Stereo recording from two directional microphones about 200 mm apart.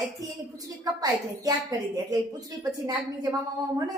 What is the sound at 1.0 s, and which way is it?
A woman's voice, 15° right (ahead or behind).